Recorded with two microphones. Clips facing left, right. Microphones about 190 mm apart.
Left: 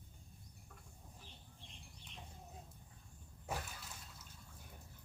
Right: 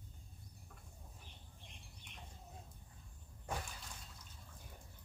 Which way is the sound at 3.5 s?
5° left (ahead or behind).